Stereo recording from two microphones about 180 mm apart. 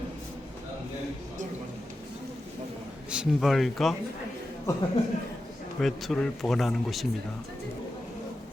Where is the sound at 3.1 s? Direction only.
5° right (ahead or behind).